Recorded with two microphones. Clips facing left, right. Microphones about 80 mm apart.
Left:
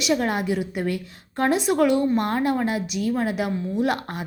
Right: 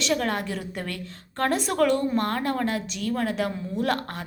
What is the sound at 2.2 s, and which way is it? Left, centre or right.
A woman's voice, centre.